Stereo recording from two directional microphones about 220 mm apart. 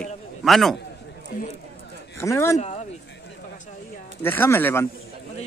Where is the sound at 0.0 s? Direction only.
Centre (ahead or behind).